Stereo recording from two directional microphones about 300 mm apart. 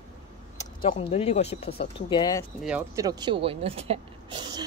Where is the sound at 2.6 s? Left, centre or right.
Centre.